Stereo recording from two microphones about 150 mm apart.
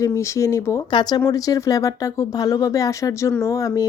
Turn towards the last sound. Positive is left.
turn(degrees=20)  # may be behind; listen again after turning